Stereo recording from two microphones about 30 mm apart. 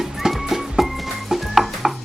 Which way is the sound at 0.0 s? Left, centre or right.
Centre.